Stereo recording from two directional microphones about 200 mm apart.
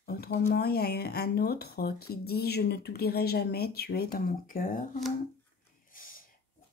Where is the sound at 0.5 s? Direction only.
50° left (ahead or behind).